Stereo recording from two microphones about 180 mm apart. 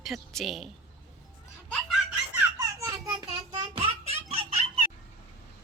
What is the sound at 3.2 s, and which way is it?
Child singing, 25° right (ahead or behind).